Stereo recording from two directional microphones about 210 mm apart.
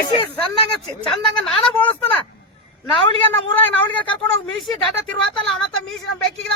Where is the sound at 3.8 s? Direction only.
25° left (ahead or behind).